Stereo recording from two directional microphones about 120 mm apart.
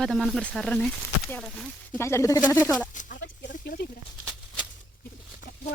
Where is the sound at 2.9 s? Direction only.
90° left.